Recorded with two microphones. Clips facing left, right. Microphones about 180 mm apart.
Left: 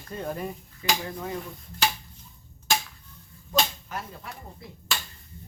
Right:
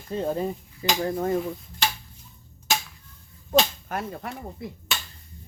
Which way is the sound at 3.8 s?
60° right (ahead or behind).